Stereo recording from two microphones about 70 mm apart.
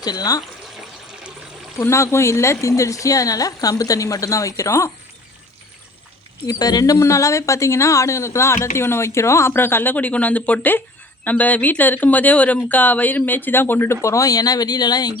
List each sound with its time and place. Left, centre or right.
0.0 s speech: left
1.8 s speech: left
6.5 s speech: left